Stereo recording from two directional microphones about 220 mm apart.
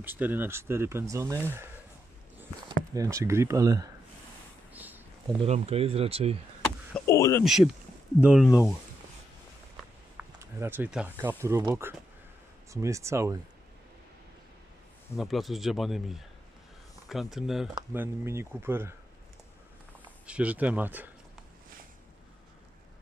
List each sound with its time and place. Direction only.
0.0 s speech: 10° right (ahead or behind)
2.9 s speech: 15° right (ahead or behind)
4.7 s a sound: 10° right (ahead or behind)
5.4 s speech: 25° right (ahead or behind)
6.9 s speech: 15° left (ahead or behind)
7.4 s speech: centre (ahead or behind)
10.1 s speech: 10° right (ahead or behind)
15.1 s speech: centre (ahead or behind)
20.2 s speech: 5° right (ahead or behind)